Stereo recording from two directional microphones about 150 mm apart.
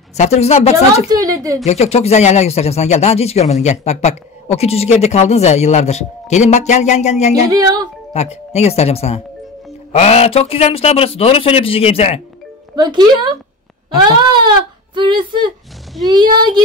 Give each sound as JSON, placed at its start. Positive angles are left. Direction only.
{"t": 0.2, "sound": "speech", "side_deg": 45}
{"t": 1.0, "sound": "speech", "side_deg": -25}
{"t": 1.7, "sound": "speech", "side_deg": 45}
{"t": 7.5, "sound": "speech", "side_deg": -25}
{"t": 8.1, "sound": "a man's voice", "side_deg": 45}
{"t": 12.7, "sound": "speech", "side_deg": -30}
{"t": 15.0, "sound": "a woman's voice", "side_deg": -35}